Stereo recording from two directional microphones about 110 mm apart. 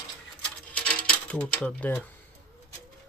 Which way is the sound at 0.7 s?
10° left (ahead or behind).